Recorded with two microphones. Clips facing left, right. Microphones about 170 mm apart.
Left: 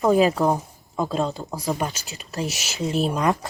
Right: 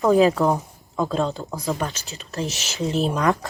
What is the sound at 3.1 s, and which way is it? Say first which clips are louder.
Speech: right 1 dB; 15° left (ahead or behind).